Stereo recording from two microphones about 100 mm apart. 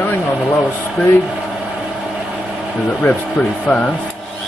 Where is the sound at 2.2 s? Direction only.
5° right (ahead or behind).